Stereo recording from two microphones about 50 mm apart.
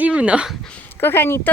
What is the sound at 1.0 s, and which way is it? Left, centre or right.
Speech, left.